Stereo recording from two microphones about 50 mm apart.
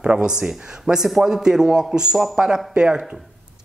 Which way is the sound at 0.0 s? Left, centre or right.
Centre.